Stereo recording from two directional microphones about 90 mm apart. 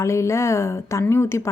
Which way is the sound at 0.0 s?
30° left (ahead or behind).